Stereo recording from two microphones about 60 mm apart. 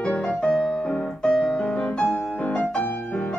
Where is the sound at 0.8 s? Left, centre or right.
Centre.